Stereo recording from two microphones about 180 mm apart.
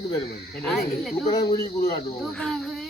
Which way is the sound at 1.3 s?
20° left (ahead or behind).